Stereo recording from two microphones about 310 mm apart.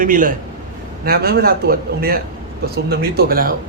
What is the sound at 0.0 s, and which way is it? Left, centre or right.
Speech, right.